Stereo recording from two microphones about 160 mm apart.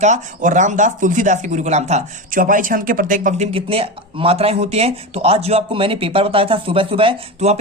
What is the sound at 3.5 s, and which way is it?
Speech, 35° right (ahead or behind).